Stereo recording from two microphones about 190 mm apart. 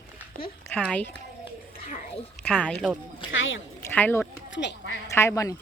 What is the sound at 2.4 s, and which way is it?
Speech, 5° left (ahead or behind).